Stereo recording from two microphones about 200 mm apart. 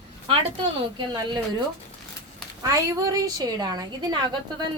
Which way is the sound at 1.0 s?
25° right (ahead or behind).